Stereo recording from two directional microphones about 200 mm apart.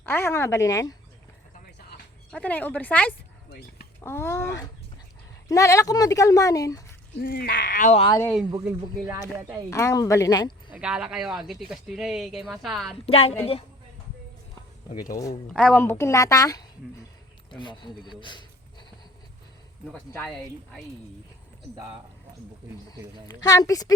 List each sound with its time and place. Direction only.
0.0 s a woman's voice: 10° left (ahead or behind)
2.3 s a woman's voice: 5° left (ahead or behind)
5.5 s a woman's voice: 15° left (ahead or behind)
7.2 s speech: 50° left (ahead or behind)
8.4 s speech: 15° right (ahead or behind)
9.6 s a woman's voice: 15° left (ahead or behind)
10.8 s speech: 5° right (ahead or behind)
13.1 s a woman's voice: 30° left (ahead or behind)
15.1 s a woman's voice: 15° left (ahead or behind)
15.4 s a woman's voice: 5° left (ahead or behind); by 18.9 s 20° left (ahead or behind)
19.9 s a woman's voice: 10° left (ahead or behind)
22.9 s a woman's voice: 20° left (ahead or behind)